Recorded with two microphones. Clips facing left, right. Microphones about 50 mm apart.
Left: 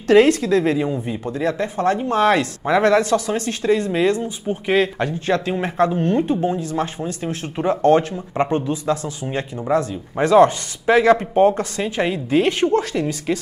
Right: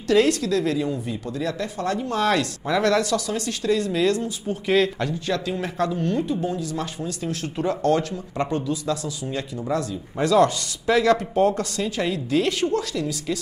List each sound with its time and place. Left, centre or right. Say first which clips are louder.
0.1 s a woman's voice: left 6 dB; left
5.0 s speech: left 5 dB; left